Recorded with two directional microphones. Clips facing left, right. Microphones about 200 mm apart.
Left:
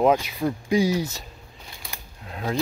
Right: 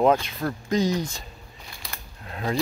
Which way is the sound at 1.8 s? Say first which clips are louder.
Even; centre (ahead or behind).